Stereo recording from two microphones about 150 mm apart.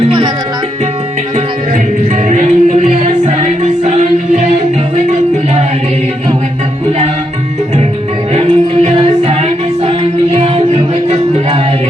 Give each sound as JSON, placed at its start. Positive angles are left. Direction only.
{"t": 2.3, "sound": "music", "side_deg": -50}
{"t": 8.4, "sound": "music", "side_deg": -35}